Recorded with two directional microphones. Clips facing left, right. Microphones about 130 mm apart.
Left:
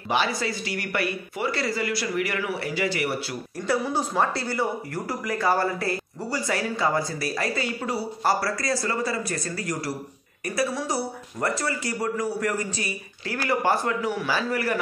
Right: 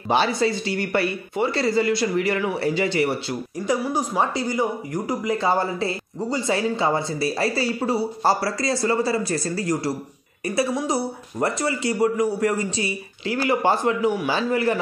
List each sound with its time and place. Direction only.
0.1 s speech: 30° right (ahead or behind)
3.6 s speech: 15° right (ahead or behind)